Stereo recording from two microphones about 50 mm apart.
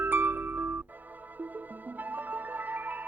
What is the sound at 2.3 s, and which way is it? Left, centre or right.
Music, right.